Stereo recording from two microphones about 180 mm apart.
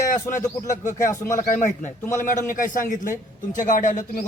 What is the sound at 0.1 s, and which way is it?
Speech, 45° left (ahead or behind).